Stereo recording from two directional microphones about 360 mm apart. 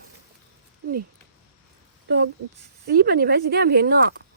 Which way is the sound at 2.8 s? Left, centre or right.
Right.